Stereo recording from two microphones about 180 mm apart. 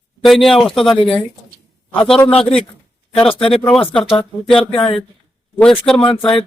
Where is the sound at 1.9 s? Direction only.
5° left (ahead or behind).